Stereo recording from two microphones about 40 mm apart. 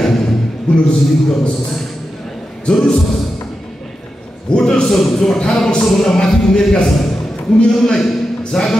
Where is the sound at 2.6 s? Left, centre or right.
Left.